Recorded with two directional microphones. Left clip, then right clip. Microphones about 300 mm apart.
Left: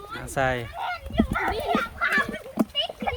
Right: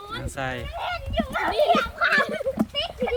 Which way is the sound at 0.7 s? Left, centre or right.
Right.